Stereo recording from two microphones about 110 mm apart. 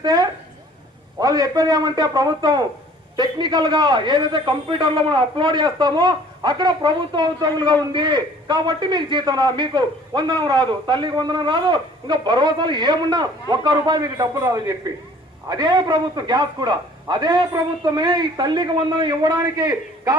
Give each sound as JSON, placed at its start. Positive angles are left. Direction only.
{"t": 0.0, "sound": "a man's voice", "side_deg": -35}